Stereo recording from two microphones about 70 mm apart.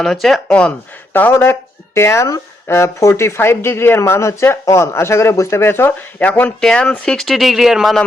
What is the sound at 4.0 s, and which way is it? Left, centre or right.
Speech, left.